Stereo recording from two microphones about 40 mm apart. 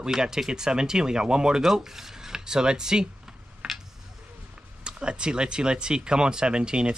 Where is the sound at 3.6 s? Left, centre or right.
Centre.